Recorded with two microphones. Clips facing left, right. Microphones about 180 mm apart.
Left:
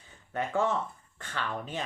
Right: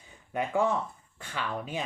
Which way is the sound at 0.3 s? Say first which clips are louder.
Right 1 dB; 10° right (ahead or behind).